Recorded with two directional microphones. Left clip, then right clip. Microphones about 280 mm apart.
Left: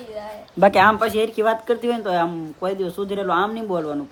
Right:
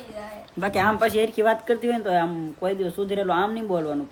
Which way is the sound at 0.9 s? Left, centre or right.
Centre.